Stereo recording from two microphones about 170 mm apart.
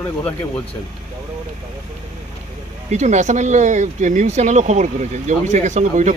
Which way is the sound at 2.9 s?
45° right (ahead or behind).